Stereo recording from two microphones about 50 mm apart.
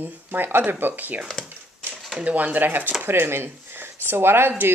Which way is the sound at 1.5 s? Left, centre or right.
Right.